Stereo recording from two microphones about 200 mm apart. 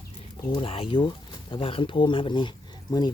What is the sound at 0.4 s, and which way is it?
Speech, 25° left (ahead or behind).